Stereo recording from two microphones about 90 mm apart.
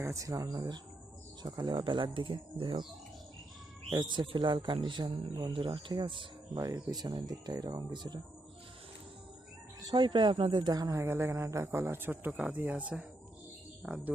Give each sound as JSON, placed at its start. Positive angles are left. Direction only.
{"t": 0.0, "sound": "speech", "side_deg": -35}
{"t": 3.9, "sound": "speech", "side_deg": -55}
{"t": 4.3, "sound": "speech", "side_deg": -65}
{"t": 5.5, "sound": "speech", "side_deg": -75}
{"t": 6.5, "sound": "speech", "side_deg": -40}
{"t": 9.8, "sound": "speech", "side_deg": -55}